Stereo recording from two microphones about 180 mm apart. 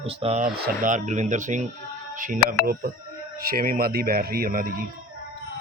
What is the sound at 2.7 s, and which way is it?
A man's voice, 55° right (ahead or behind).